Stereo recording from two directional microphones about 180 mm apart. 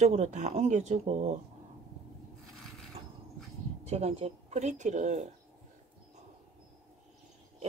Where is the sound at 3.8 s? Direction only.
35° right (ahead or behind).